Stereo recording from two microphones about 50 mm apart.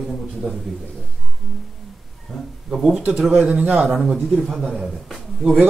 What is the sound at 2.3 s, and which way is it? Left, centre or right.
Speech, centre.